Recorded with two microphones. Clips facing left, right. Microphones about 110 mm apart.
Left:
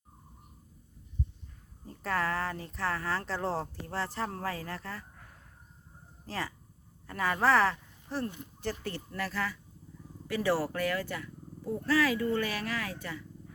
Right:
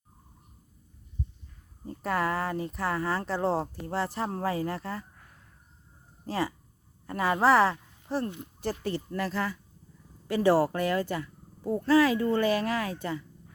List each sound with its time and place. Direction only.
2.0 s speech: 15° right (ahead or behind)
6.2 s speech: 15° right (ahead or behind); by 10.8 s 35° right (ahead or behind)
10.8 s speech: 25° right (ahead or behind)